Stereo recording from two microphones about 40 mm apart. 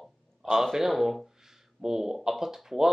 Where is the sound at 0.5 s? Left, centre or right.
Centre.